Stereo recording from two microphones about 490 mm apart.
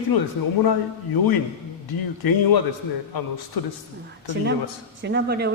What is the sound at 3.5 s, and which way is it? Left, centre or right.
Speech, left.